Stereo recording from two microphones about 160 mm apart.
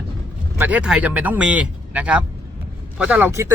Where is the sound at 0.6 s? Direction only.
5° right (ahead or behind).